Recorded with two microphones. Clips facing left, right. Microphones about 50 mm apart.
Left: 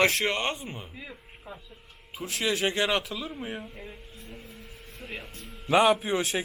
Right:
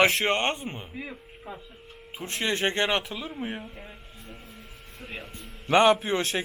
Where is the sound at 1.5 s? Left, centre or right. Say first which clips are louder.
Right 3 dB; right.